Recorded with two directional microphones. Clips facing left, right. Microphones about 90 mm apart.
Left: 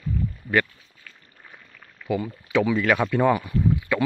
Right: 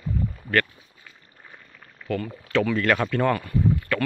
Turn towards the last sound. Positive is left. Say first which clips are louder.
# left 1 dB
turn(degrees=15)  # may be behind; listen again after turning